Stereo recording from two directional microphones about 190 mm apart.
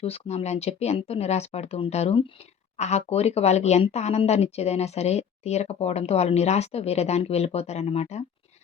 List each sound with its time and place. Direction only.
0.0 s speech: 30° left (ahead or behind)